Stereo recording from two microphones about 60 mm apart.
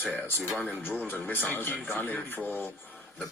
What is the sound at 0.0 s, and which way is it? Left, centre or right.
Speech, left.